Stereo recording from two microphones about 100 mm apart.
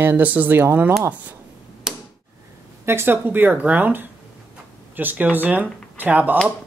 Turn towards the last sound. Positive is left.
turn(degrees=-20)  # may be behind; listen again after turning